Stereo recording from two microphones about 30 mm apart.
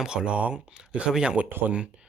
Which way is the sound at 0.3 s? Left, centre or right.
Right.